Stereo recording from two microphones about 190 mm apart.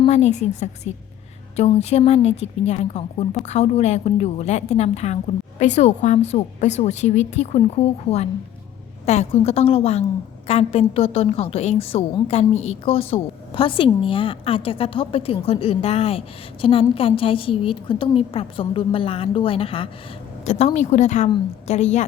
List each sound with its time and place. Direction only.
0.0 s a woman's voice: 35° left (ahead or behind)